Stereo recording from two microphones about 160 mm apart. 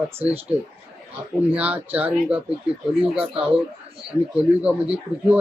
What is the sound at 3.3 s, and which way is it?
Speech, 35° right (ahead or behind).